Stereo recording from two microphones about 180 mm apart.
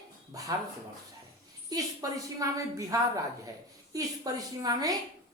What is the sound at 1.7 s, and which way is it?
A woman's voice, 20° right (ahead or behind).